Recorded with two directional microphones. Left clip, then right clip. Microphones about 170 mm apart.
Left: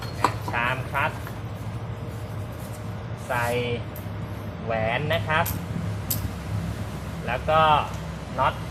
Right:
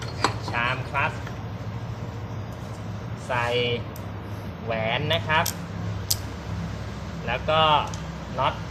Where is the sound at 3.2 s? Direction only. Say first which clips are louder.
Right 1 dB; 25° right (ahead or behind).